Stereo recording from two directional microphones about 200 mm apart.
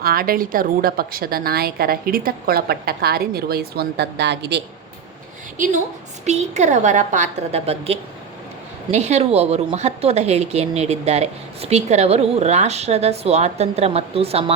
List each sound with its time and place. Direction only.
0.0 s a woman's voice: 45° right (ahead or behind)
6.2 s a woman's voice: 35° right (ahead or behind)